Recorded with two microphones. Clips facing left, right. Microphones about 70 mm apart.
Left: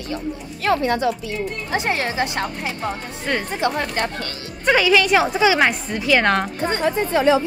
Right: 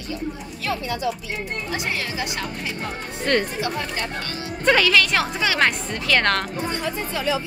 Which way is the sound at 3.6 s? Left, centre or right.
Left.